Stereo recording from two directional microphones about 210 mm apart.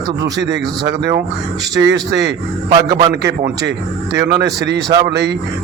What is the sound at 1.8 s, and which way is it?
Speech, 55° right (ahead or behind).